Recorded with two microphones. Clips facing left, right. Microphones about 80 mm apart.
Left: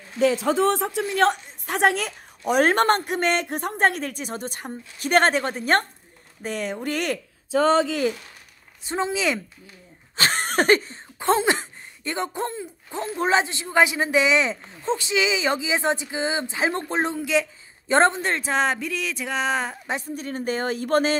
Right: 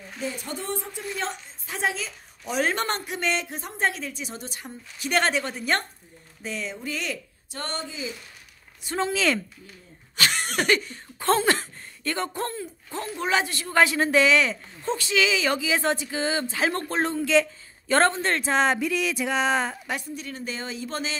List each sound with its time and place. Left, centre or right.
0.2 s a woman's voice: left
6.4 s a woman's voice: left
7.8 s speech: left
8.8 s speech: centre
10.1 s a sound: left
11.1 s speech: centre
18.5 s speech: centre
20.2 s a woman's voice: left